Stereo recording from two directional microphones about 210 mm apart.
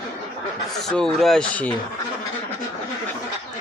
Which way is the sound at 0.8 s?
Centre (ahead or behind).